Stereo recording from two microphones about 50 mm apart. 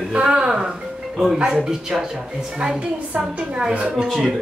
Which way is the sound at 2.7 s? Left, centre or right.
Right.